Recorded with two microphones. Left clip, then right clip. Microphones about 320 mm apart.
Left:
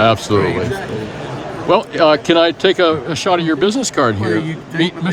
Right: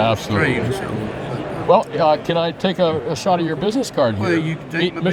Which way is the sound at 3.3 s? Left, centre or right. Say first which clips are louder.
Left 5 dB; left.